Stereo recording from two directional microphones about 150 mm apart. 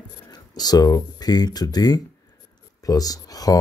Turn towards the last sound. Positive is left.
turn(degrees=25)  # may be behind; listen again after turning